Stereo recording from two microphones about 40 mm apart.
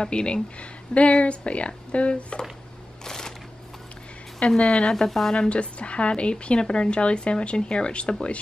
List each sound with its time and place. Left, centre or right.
0.0 s speech: left
3.1 s a sound: centre
4.4 s speech: centre
5.3 s speech: left